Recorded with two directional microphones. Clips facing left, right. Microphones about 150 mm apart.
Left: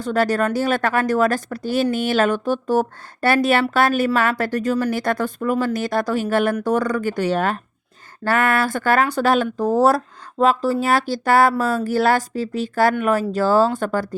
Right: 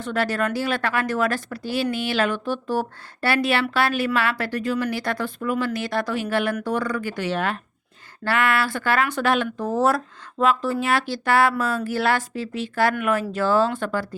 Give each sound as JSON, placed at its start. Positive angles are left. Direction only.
{"t": 0.0, "sound": "speech", "side_deg": 40}